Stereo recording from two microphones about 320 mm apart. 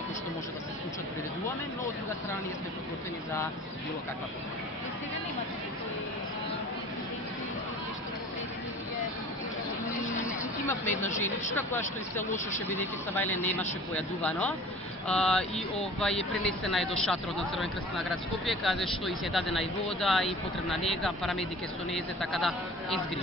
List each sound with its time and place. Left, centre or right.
10.2 s a sound: centre
11.1 s speech: left
12.6 s speech: centre
16.4 s speech: centre